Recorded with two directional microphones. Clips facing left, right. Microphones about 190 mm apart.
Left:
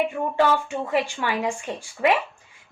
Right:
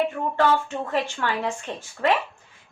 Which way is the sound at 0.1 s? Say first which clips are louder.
Left 1 dB; 15° left (ahead or behind).